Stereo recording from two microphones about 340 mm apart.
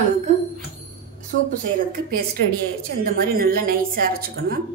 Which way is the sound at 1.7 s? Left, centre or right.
Right.